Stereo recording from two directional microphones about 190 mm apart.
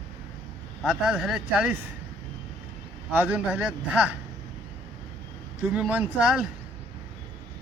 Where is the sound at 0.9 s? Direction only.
Centre (ahead or behind).